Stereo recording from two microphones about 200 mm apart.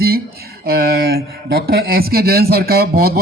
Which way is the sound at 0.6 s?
50° right (ahead or behind).